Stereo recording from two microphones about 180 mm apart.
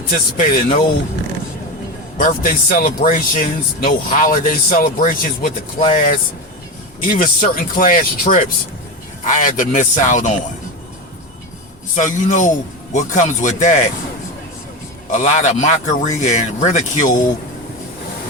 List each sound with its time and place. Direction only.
0.1 s a man's voice: 50° left (ahead or behind)
2.1 s a man's voice: 50° left (ahead or behind)
11.9 s a man's voice: 45° left (ahead or behind)
15.1 s speech: 40° left (ahead or behind)